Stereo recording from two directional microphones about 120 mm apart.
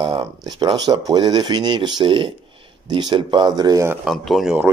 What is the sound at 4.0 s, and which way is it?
Speech, centre (ahead or behind).